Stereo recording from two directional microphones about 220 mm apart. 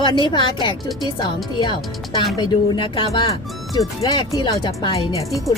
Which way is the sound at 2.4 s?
20° left (ahead or behind).